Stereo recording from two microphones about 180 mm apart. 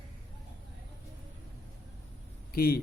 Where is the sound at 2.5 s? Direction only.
55° left (ahead or behind).